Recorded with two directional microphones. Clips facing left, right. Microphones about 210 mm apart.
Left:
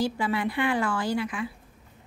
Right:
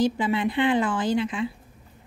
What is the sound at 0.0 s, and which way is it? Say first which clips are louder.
Speech: right 4 dB; 20° right (ahead or behind).